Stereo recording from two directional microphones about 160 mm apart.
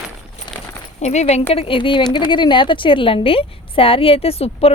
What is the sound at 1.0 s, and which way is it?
A woman's voice, 45° left (ahead or behind).